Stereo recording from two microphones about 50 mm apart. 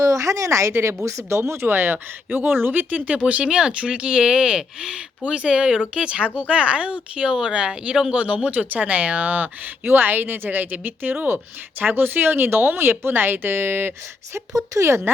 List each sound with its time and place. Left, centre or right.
0.1 s speech: right
0.7 s a woman's voice: right
1.0 s speech: right
1.6 s speech: right
9.8 s speech: right
14.3 s speech: right